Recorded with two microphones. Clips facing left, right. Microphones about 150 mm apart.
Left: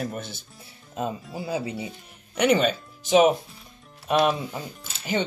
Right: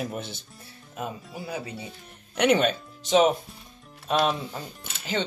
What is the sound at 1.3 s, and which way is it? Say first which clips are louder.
Speech: left 6 dB; 25° left (ahead or behind).